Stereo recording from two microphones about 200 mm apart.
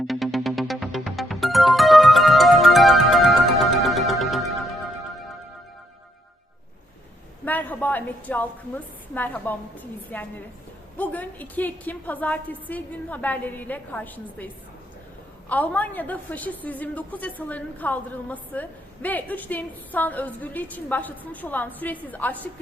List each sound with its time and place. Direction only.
0.1 s music: centre (ahead or behind)
7.4 s a woman's voice: 10° left (ahead or behind)